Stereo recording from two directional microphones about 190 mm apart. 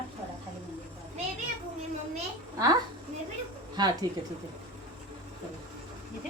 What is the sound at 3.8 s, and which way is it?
Speech, 20° right (ahead or behind).